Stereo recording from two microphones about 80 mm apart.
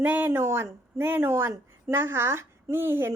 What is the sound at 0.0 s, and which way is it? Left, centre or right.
Speech, right.